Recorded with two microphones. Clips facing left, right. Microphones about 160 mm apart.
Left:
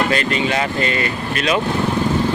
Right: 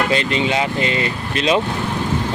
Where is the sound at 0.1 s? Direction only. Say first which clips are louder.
Even; 25° right (ahead or behind).